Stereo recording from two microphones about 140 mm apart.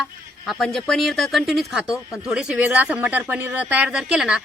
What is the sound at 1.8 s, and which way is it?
Speech, 25° left (ahead or behind).